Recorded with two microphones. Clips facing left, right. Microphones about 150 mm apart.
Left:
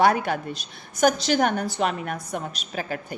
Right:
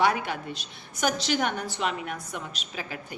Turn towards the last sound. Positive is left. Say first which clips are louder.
# left 6 dB
turn(degrees=45)  # may be behind; listen again after turning